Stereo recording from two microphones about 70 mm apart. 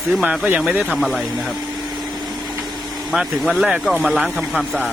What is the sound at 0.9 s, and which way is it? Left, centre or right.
Speech, centre.